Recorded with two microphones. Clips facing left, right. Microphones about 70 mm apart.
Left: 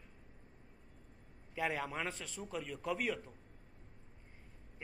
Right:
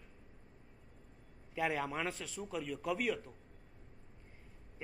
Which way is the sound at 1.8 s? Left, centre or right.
Centre.